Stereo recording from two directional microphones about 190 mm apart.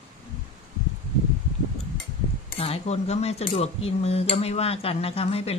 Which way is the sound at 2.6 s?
35° left (ahead or behind).